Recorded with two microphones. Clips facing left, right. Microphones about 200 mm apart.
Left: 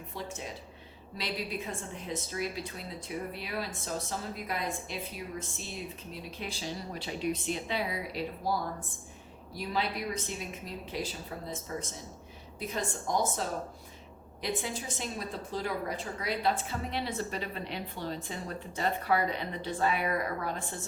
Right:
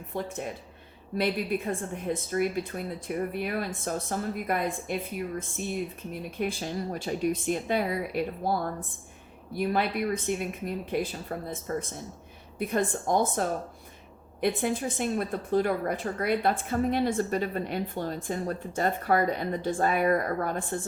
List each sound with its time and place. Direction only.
0.1 s a woman's voice: 55° right (ahead or behind)